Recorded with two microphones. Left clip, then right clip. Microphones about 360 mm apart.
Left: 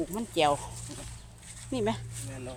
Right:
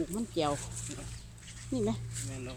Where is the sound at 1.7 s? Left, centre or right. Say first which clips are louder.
Left 3 dB; left.